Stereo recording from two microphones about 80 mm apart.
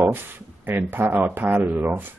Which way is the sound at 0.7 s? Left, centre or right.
Right.